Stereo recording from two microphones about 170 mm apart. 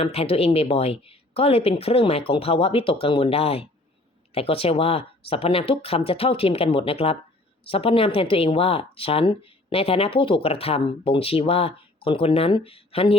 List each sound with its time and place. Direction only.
0.0 s speech: 35° left (ahead or behind)